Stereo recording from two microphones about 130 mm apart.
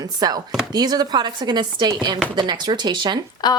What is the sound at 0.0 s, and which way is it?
Speech, 30° right (ahead or behind).